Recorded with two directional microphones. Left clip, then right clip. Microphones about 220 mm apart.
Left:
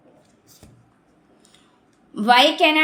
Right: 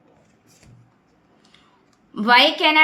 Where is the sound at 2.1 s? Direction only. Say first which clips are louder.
Even; 10° right (ahead or behind).